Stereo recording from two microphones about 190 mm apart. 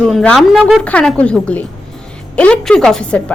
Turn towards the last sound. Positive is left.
turn(degrees=5)  # may be behind; listen again after turning